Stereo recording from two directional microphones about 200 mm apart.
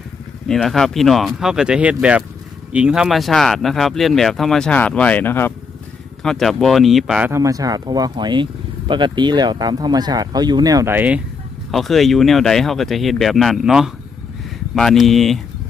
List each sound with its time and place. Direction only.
0.4 s speech: centre (ahead or behind)